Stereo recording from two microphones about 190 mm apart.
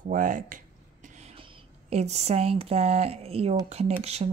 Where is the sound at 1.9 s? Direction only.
35° right (ahead or behind).